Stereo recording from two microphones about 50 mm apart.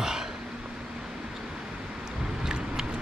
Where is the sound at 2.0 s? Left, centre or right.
Centre.